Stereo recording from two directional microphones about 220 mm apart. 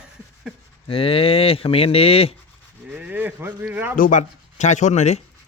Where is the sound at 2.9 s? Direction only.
5° right (ahead or behind).